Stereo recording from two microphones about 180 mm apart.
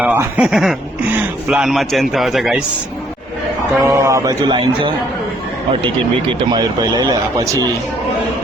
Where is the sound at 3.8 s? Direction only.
15° right (ahead or behind).